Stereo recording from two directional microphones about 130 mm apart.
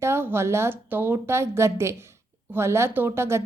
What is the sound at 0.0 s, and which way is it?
A woman's voice, 20° right (ahead or behind).